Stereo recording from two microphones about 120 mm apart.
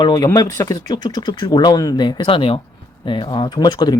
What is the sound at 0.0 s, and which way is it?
Speech, 30° left (ahead or behind).